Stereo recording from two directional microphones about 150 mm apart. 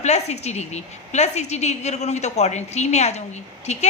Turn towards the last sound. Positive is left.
turn(degrees=50)  # may be behind; listen again after turning